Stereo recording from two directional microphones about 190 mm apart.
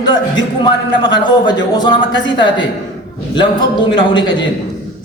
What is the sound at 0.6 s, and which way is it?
A man's voice, 25° left (ahead or behind).